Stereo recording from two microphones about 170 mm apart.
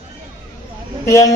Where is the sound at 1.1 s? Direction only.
20° left (ahead or behind).